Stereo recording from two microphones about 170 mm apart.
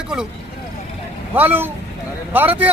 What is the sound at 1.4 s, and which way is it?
Speech, 10° right (ahead or behind).